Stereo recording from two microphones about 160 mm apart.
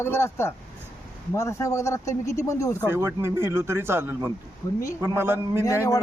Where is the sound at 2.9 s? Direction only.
15° right (ahead or behind).